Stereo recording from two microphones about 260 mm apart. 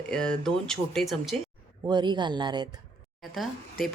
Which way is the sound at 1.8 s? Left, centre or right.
Centre.